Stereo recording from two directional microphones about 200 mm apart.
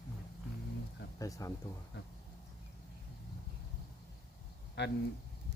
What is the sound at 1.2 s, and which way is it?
Speech, 15° left (ahead or behind).